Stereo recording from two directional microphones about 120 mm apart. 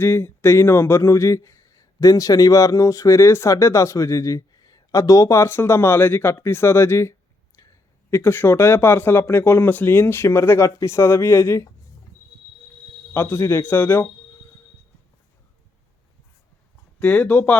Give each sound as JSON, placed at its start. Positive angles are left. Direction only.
{"t": 0.0, "sound": "speech", "side_deg": 20}
{"t": 13.1, "sound": "speech", "side_deg": 20}
{"t": 17.0, "sound": "speech", "side_deg": 15}